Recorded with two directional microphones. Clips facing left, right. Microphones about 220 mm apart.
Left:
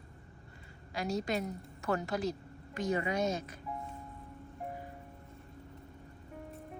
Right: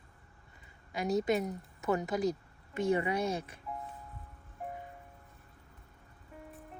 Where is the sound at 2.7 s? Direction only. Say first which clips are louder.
Right 2 dB; 30° right (ahead or behind).